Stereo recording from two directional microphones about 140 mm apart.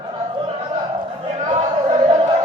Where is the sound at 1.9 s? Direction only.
40° right (ahead or behind).